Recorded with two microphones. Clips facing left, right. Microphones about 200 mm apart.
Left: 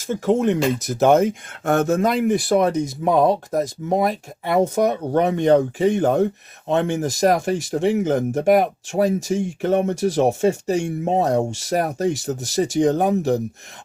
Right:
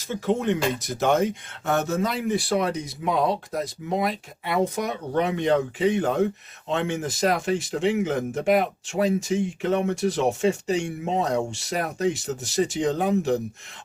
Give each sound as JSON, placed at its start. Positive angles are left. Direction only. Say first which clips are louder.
{"t": 0.1, "sound": "speech", "louder": "left 5 dB", "side_deg": 45}